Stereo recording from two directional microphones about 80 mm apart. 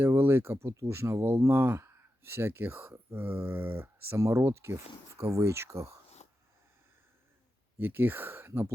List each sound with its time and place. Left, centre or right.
0.0 s speech: right
7.8 s speech: right